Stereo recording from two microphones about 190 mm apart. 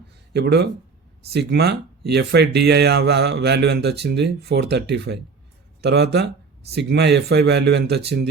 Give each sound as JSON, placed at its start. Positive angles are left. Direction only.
{"t": 0.3, "sound": "speech", "side_deg": -60}